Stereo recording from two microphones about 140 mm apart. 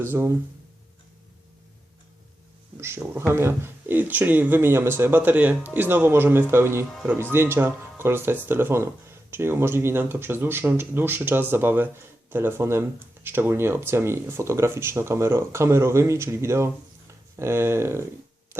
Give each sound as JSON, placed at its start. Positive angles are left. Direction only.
{"t": 0.0, "sound": "speech", "side_deg": -15}
{"t": 2.8, "sound": "speech", "side_deg": -20}